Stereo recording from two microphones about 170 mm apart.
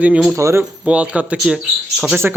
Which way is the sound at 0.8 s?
5° right (ahead or behind).